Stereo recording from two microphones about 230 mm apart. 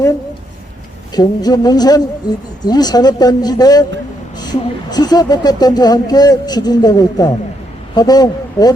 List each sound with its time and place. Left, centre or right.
1.1 s speech: centre